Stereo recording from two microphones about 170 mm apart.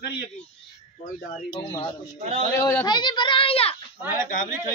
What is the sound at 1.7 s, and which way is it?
Speech, 25° left (ahead or behind).